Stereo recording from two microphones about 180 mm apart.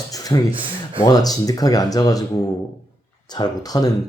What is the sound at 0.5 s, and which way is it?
Rub, 30° right (ahead or behind).